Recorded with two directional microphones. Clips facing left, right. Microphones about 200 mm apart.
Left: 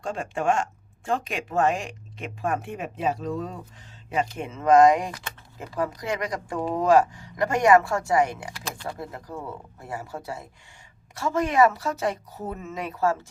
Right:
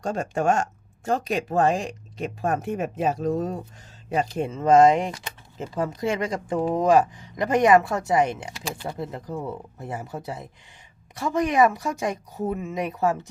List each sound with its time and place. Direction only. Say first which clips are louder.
0.0 s speech: right 3 dB; 40° right (ahead or behind)
4.1 s speech: right 3 dB; 35° right (ahead or behind); by 13.1 s 15° right (ahead or behind)